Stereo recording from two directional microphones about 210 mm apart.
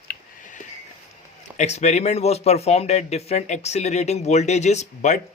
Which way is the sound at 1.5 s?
30° left (ahead or behind).